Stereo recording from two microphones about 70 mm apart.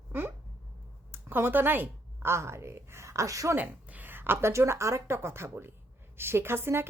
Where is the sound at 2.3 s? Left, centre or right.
Right.